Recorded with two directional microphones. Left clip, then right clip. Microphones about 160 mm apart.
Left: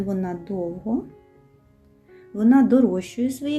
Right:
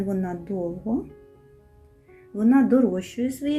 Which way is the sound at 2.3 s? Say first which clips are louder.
Left 2 dB; 5° left (ahead or behind).